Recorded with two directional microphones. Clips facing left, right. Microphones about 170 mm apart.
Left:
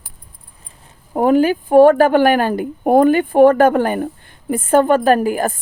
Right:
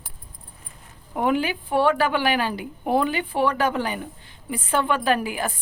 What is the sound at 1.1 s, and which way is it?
A woman's voice, 40° left (ahead or behind).